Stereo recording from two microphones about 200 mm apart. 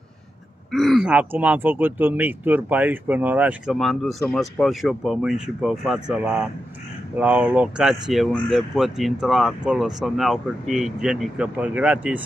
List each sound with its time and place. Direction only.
0.7 s speech: centre (ahead or behind)